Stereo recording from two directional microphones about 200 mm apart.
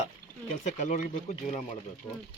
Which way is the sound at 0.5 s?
35° left (ahead or behind).